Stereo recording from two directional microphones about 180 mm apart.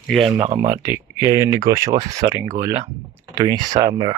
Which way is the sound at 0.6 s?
15° right (ahead or behind).